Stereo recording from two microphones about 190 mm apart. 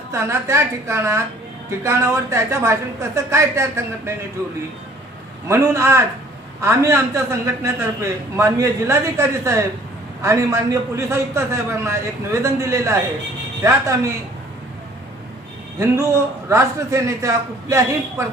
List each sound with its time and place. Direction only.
0.1 s a man's voice: 15° right (ahead or behind)
5.5 s a man's voice: 15° right (ahead or behind)
16.5 s a man's voice: 15° right (ahead or behind)